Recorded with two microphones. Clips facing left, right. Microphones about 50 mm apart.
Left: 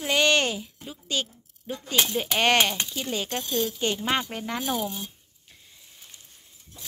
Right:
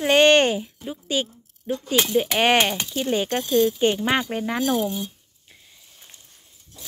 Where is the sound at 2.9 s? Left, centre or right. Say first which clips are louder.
Right 7 dB; right.